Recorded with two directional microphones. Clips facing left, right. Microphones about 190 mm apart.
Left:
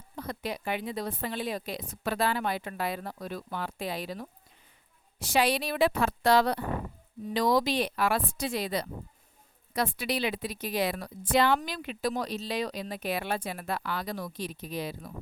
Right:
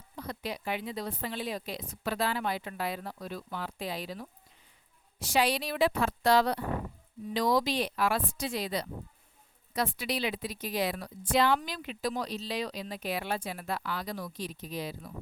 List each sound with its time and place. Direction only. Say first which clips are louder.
0.2 s a woman's voice: left 2 dB; 50° left (ahead or behind)
5.3 s speech: left 2 dB; 60° left (ahead or behind)